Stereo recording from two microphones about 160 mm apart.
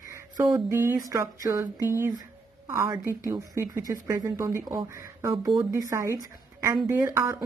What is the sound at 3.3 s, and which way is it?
A woman's voice, 15° right (ahead or behind).